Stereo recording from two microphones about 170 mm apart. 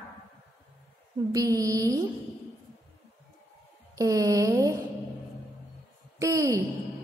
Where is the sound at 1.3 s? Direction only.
20° right (ahead or behind).